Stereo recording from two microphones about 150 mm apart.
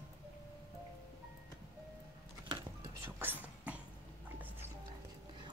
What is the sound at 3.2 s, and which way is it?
Whispering, 10° right (ahead or behind).